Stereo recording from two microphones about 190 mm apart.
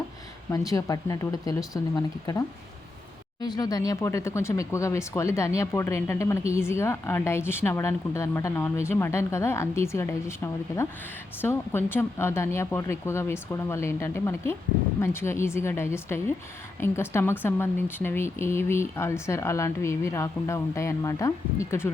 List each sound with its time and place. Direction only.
0.5 s speech: 20° left (ahead or behind)
3.4 s speech: 20° left (ahead or behind)